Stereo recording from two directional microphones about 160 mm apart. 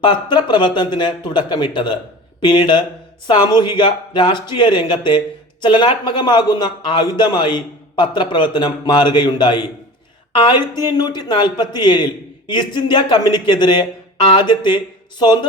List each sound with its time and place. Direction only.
0.0 s a man's voice: 30° left (ahead or behind)